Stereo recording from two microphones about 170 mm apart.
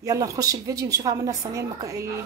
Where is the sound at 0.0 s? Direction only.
20° right (ahead or behind).